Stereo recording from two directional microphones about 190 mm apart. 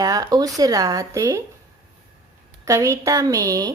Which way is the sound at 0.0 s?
20° right (ahead or behind).